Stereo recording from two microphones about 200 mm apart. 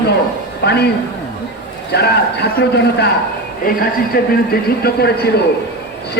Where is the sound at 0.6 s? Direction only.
55° left (ahead or behind).